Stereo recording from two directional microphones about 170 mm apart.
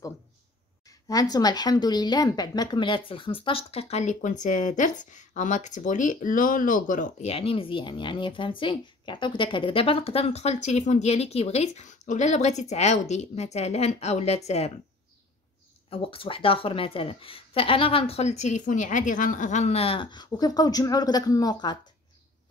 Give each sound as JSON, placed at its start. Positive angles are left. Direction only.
{"t": 0.8, "sound": "a woman's voice", "side_deg": 20}
{"t": 15.9, "sound": "a woman's voice", "side_deg": 30}